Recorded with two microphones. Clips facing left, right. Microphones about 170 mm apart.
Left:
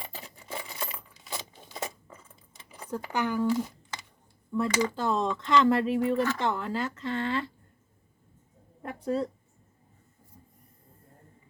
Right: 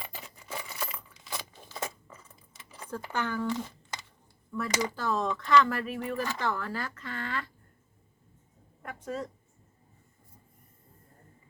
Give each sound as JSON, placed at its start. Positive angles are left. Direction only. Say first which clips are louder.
{"t": 1.4, "sound": "coin", "louder": "even", "side_deg": 20}
{"t": 2.7, "sound": "speech", "louder": "left 3 dB", "side_deg": 15}
{"t": 4.5, "sound": "speech", "louder": "left 4 dB", "side_deg": 25}
{"t": 8.8, "sound": "speech", "louder": "left 7 dB", "side_deg": 30}